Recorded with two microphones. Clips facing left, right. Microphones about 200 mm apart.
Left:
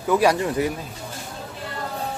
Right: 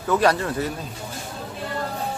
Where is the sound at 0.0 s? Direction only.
10° left (ahead or behind).